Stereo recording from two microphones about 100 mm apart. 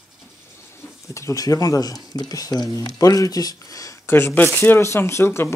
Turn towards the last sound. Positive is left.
turn(degrees=25)  # may be behind; listen again after turning